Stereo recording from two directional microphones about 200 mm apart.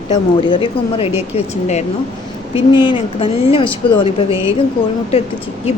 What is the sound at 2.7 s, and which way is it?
A woman's voice, 25° left (ahead or behind).